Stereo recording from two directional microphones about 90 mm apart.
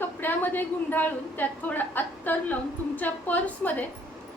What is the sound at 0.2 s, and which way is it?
A woman's voice, 20° left (ahead or behind).